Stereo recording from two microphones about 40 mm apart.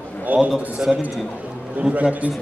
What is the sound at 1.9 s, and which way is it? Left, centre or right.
Mantra, right.